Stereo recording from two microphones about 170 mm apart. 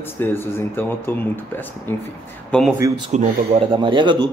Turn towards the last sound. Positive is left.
turn(degrees=-25)  # may be behind; listen again after turning